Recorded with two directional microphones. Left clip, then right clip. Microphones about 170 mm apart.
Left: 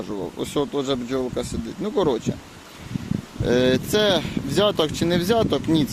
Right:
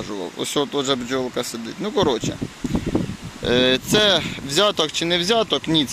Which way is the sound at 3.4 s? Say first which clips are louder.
Right 2 dB; 20° left (ahead or behind).